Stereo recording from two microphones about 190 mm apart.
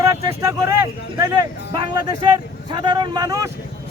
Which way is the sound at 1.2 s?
20° right (ahead or behind).